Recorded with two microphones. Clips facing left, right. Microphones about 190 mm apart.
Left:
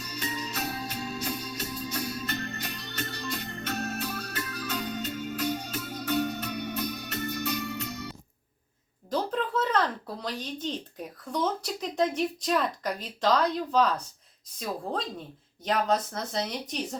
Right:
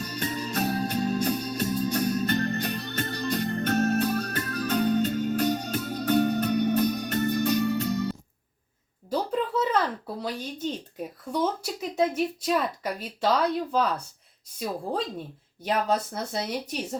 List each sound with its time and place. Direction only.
0.0 s music: 45° right (ahead or behind)
9.0 s a sound: 10° right (ahead or behind)
10.7 s speech: 5° right (ahead or behind)
15.6 s speech: 10° right (ahead or behind)